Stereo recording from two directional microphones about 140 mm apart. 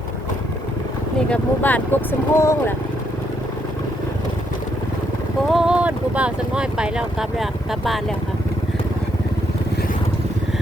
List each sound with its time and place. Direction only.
1.3 s speech: 10° left (ahead or behind)
5.5 s speech: 5° right (ahead or behind)